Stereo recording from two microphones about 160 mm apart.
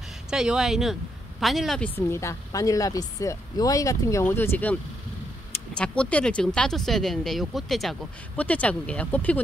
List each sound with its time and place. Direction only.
0.3 s speech: 5° right (ahead or behind)
2.0 s speech: 20° left (ahead or behind)
5.8 s speech: 5° left (ahead or behind)